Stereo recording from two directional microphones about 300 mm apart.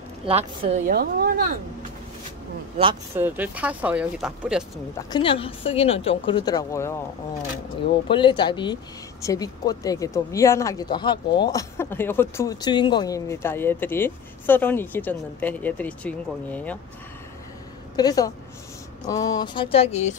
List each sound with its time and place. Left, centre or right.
0.3 s a woman's voice: right
2.8 s speech: centre
4.9 s speech: centre
8.1 s speech: centre
17.9 s speech: centre